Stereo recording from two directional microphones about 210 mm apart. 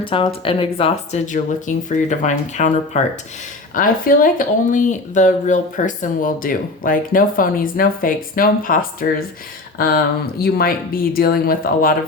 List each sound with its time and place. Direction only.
0.0 s speech: 25° left (ahead or behind); by 11.9 s 45° left (ahead or behind)